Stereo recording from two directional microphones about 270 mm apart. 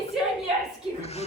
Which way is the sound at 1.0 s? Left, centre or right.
Left.